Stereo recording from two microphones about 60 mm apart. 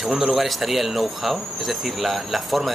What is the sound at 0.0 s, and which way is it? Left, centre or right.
Speech, centre.